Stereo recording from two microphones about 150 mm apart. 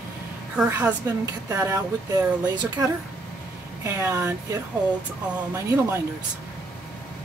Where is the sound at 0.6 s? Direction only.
15° right (ahead or behind).